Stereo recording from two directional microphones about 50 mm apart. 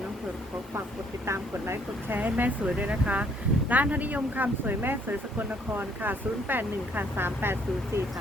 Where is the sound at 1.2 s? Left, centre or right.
Right.